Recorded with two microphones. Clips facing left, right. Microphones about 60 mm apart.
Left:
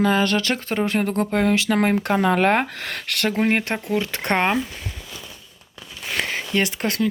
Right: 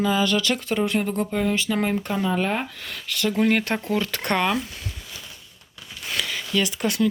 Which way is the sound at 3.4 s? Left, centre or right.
Left.